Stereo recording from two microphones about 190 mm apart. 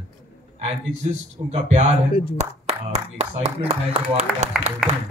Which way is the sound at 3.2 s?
35° right (ahead or behind).